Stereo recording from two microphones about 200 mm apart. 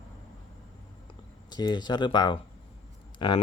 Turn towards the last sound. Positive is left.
turn(degrees=20)  # may be behind; listen again after turning